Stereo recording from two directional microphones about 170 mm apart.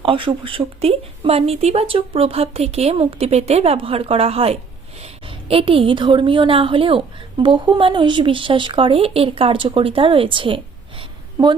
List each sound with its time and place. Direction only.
0.0 s a woman's voice: 30° right (ahead or behind)